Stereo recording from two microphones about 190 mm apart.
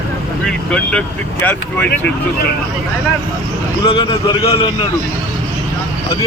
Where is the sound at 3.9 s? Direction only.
25° left (ahead or behind).